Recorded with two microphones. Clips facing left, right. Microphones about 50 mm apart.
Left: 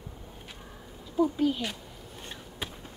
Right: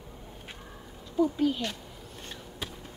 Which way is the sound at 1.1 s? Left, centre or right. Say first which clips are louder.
Even; centre.